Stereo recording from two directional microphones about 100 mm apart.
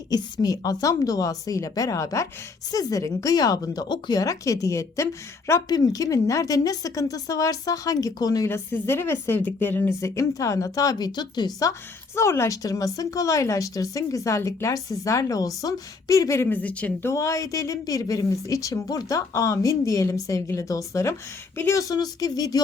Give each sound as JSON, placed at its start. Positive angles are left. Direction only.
{"t": 0.1, "sound": "speech", "side_deg": 40}
{"t": 4.2, "sound": "speech", "side_deg": 35}
{"t": 8.4, "sound": "a woman's voice", "side_deg": 25}
{"t": 12.1, "sound": "speech", "side_deg": 25}
{"t": 17.1, "sound": "speech", "side_deg": 35}
{"t": 21.8, "sound": "speech", "side_deg": 40}